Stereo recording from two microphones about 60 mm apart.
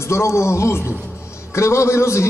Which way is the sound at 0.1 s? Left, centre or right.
Left.